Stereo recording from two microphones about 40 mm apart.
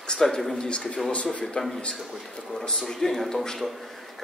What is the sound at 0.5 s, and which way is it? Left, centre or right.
A man's voice, centre.